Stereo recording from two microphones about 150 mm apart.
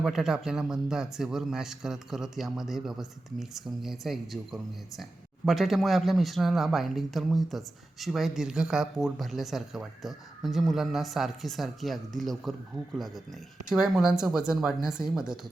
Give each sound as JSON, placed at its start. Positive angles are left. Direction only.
{"t": 0.0, "sound": "speech", "side_deg": -5}